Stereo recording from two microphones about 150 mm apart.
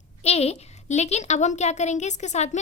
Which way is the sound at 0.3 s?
45° left (ahead or behind).